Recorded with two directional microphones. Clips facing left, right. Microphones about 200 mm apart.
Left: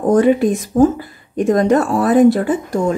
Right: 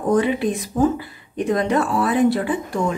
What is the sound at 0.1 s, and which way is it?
Speech, 45° left (ahead or behind).